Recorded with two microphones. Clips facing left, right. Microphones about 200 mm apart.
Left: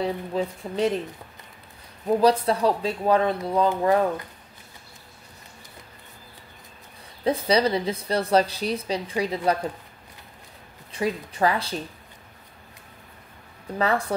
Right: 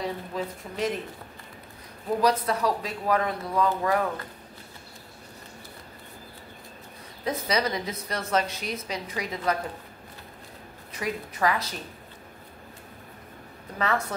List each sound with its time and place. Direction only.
0.0 s a woman's voice: 30° left (ahead or behind)
2.2 s speech: 30° left (ahead or behind)
7.2 s a woman's voice: 30° left (ahead or behind)
10.9 s speech: 30° left (ahead or behind)
13.7 s a woman's voice: 35° left (ahead or behind)